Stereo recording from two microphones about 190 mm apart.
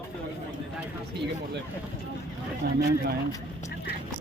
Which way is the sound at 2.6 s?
55° right (ahead or behind).